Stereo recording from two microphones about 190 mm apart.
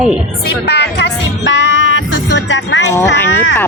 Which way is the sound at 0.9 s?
70° left (ahead or behind).